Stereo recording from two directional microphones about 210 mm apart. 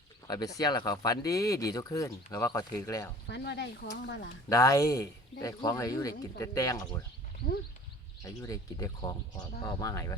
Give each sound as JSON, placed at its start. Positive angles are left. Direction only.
{"t": 0.3, "sound": "speech", "side_deg": 20}
{"t": 3.2, "sound": "speech", "side_deg": 55}
{"t": 4.4, "sound": "speech", "side_deg": 15}
{"t": 8.2, "sound": "speech", "side_deg": 15}